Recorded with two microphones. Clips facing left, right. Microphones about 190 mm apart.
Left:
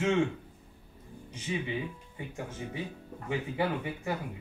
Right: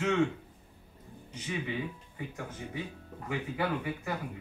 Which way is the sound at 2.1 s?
25° left (ahead or behind).